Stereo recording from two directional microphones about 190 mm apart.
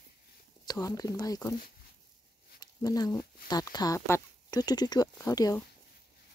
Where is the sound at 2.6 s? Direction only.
20° left (ahead or behind).